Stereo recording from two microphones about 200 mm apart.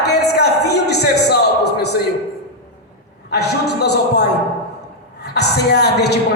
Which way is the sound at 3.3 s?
55° left (ahead or behind).